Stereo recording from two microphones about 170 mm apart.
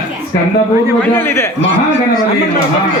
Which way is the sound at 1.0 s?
15° left (ahead or behind).